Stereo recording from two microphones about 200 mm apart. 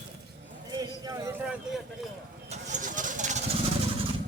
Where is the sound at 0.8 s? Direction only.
15° right (ahead or behind).